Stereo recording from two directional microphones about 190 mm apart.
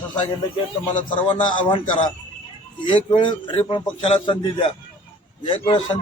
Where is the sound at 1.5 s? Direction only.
25° left (ahead or behind).